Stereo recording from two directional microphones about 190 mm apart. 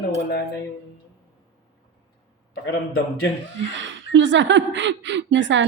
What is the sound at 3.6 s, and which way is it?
A woman's voice, 70° right (ahead or behind).